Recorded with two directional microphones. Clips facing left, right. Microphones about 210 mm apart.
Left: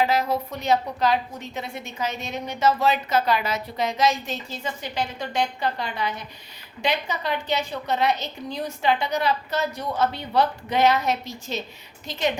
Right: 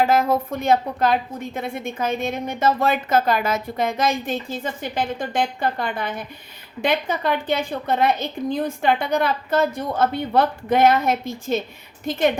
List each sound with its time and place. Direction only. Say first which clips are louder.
0.0 s a woman's voice: right 4 dB; 50° right (ahead or behind)